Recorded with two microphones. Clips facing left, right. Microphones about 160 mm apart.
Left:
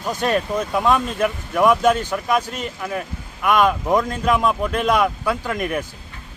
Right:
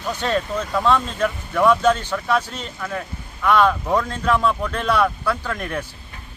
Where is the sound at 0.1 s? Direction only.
10° left (ahead or behind).